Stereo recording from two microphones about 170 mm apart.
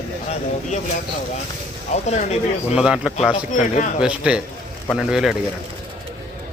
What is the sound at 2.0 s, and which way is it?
Speech, 40° left (ahead or behind).